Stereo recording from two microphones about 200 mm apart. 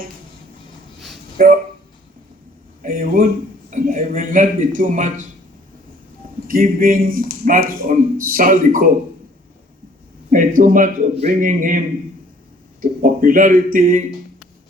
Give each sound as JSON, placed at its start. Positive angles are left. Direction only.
{"t": 1.4, "sound": "speech", "side_deg": -45}
{"t": 2.8, "sound": "speech", "side_deg": -45}
{"t": 6.5, "sound": "speech", "side_deg": -45}
{"t": 10.2, "sound": "speech", "side_deg": -40}
{"t": 12.8, "sound": "speech", "side_deg": -45}